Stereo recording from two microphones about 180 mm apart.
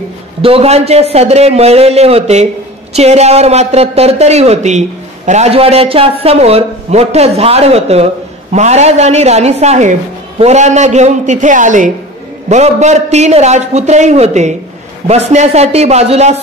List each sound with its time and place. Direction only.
0.4 s a man's voice: 30° right (ahead or behind)